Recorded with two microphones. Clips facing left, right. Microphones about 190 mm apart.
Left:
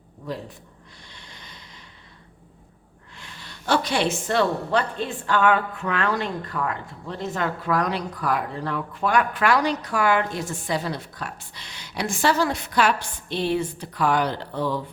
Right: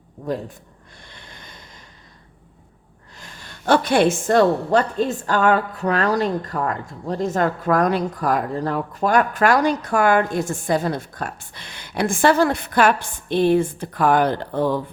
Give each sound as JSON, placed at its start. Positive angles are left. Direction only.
{"t": 0.3, "sound": "a woman's voice", "side_deg": -45}
{"t": 1.0, "sound": "a sound", "side_deg": -55}
{"t": 3.2, "sound": "a woman's voice", "side_deg": -45}